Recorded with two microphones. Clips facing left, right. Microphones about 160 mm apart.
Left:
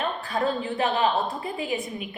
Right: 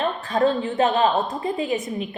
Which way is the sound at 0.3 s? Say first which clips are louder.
Right 7 dB; 40° right (ahead or behind).